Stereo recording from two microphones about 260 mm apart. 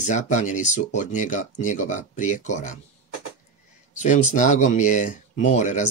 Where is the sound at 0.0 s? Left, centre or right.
Left.